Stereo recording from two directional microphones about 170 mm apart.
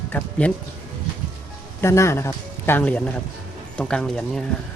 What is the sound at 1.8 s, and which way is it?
A man's voice, 15° left (ahead or behind).